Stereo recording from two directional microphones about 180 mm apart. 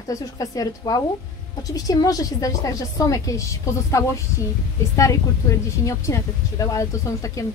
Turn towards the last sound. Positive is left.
turn(degrees=15)  # may be behind; listen again after turning